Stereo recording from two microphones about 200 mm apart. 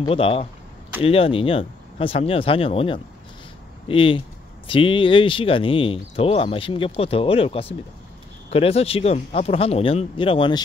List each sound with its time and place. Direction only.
0.0 s speech: 25° left (ahead or behind)